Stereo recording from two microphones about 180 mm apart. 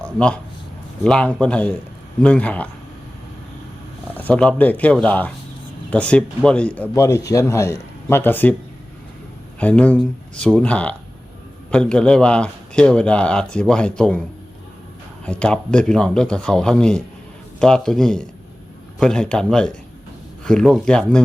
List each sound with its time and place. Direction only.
0.0 s speech: 5° left (ahead or behind)
4.2 s speech: 5° left (ahead or behind)
9.6 s a man's voice: 5° left (ahead or behind)
15.3 s a man's voice: 5° left (ahead or behind)